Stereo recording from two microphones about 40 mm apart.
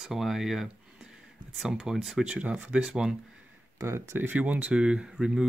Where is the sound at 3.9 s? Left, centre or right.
Right.